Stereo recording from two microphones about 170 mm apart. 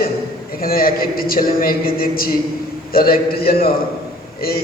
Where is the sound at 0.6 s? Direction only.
60° left (ahead or behind).